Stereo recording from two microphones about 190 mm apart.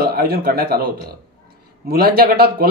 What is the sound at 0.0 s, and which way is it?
A man's voice, 55° right (ahead or behind).